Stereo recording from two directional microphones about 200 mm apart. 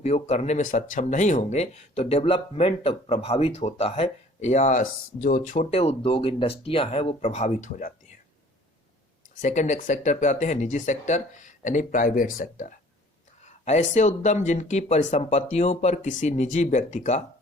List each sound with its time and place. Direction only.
0.0 s speech: 35° left (ahead or behind)
9.4 s speech: 35° left (ahead or behind)